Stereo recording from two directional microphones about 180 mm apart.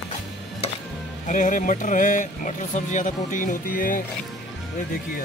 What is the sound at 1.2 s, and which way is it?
Speech, 45° left (ahead or behind).